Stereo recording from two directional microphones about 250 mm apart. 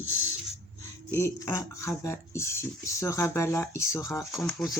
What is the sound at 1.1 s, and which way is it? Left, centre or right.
Speech, centre.